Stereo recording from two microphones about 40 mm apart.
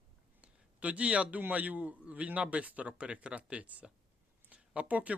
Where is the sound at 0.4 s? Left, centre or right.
Right.